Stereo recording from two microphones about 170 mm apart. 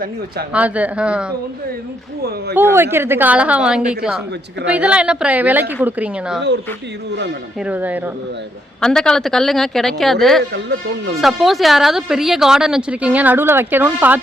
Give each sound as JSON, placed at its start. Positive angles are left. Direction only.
{"t": 0.5, "sound": "a woman's voice", "side_deg": -10}
{"t": 2.6, "sound": "a woman's voice", "side_deg": -15}
{"t": 7.6, "sound": "a woman's voice", "side_deg": -10}
{"t": 8.8, "sound": "speech", "side_deg": 5}
{"t": 10.5, "sound": "speech", "side_deg": -85}
{"t": 11.2, "sound": "speech", "side_deg": 0}